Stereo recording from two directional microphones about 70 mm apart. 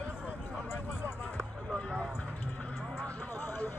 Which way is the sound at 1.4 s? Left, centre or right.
Centre.